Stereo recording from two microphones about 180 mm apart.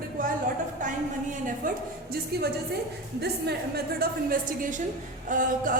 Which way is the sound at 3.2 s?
65° right (ahead or behind).